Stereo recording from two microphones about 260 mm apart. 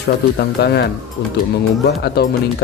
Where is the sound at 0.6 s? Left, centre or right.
Left.